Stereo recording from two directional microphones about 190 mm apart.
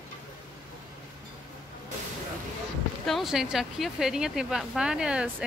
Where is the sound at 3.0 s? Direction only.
Centre (ahead or behind).